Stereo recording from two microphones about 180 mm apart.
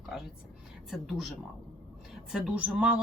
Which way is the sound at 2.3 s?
5° right (ahead or behind).